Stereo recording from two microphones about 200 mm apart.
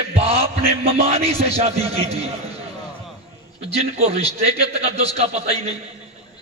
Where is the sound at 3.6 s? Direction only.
30° right (ahead or behind).